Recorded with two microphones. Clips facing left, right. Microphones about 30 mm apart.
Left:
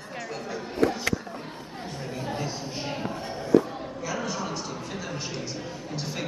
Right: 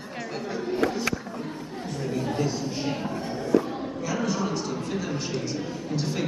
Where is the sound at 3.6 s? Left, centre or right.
Centre.